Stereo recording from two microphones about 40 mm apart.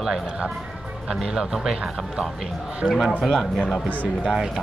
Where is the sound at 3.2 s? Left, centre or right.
Centre.